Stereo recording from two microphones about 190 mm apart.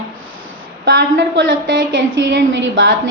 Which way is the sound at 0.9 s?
70° right (ahead or behind).